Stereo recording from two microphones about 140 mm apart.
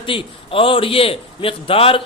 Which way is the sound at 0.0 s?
40° left (ahead or behind).